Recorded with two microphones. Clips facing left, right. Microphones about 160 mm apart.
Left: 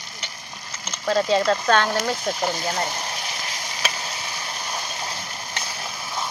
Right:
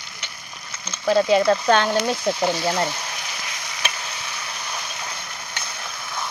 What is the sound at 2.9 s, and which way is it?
Sizzle, 30° left (ahead or behind).